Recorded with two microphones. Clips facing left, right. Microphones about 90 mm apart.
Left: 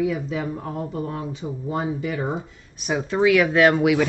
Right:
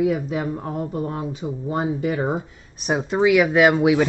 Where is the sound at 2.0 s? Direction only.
45° right (ahead or behind).